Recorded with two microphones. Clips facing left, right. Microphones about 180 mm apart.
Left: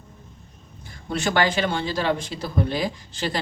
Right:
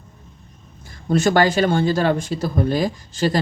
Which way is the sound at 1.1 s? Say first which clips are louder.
Right 6 dB; 45° right (ahead or behind).